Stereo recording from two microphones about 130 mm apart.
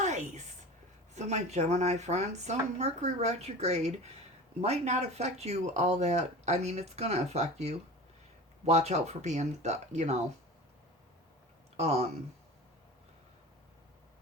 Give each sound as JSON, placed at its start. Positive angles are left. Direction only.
{"t": 0.0, "sound": "a sound", "side_deg": -65}
{"t": 1.1, "sound": "speech", "side_deg": -60}
{"t": 11.8, "sound": "speech", "side_deg": -55}